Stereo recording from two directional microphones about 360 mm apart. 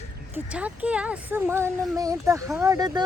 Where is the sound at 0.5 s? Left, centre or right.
Centre.